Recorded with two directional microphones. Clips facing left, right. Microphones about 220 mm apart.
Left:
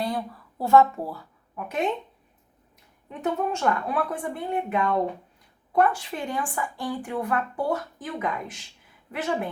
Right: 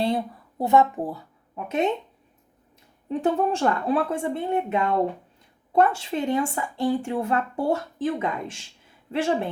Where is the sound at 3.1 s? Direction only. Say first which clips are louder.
Right 4 dB; 30° right (ahead or behind).